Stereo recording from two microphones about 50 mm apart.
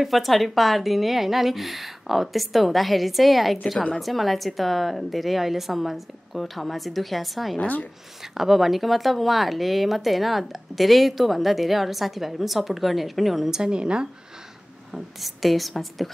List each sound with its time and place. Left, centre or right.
0.0 s speech: centre
7.5 s speech: left
8.2 s speech: centre
14.9 s speech: centre